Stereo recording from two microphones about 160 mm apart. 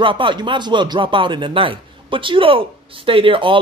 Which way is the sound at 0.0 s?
30° right (ahead or behind).